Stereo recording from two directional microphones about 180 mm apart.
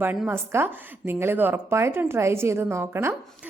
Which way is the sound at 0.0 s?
10° right (ahead or behind).